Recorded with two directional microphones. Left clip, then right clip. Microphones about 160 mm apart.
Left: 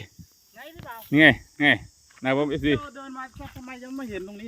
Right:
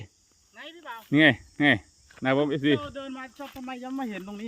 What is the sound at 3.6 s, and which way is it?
Speech, 50° right (ahead or behind).